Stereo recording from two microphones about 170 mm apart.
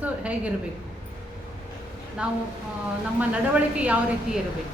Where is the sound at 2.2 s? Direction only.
5° right (ahead or behind).